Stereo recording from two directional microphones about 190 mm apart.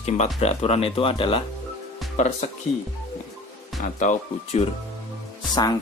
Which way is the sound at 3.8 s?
40° left (ahead or behind).